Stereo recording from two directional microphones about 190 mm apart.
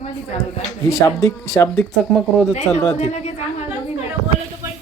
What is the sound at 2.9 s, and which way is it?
Speech, 35° left (ahead or behind).